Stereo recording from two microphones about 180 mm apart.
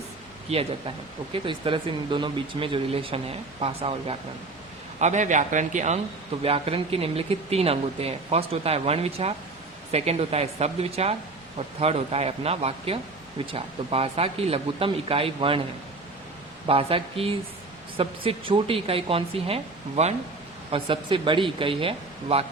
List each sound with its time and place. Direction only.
0.5 s a man's voice: 30° right (ahead or behind)
6.4 s speech: 30° right (ahead or behind)
16.6 s speech: 30° right (ahead or behind)